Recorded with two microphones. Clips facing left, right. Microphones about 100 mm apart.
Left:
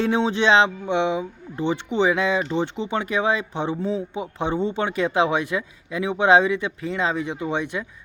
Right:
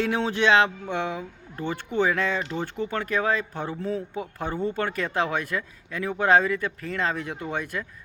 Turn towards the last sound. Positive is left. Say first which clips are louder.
# left 5 dB
turn(degrees=0)  # may be behind; listen again after turning